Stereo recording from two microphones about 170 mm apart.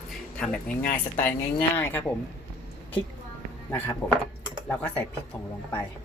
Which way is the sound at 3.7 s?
15° left (ahead or behind).